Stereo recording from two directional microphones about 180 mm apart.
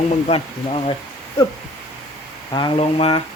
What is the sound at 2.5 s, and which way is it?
Speech, 30° left (ahead or behind).